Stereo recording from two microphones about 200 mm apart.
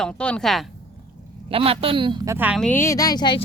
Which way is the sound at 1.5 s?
30° right (ahead or behind).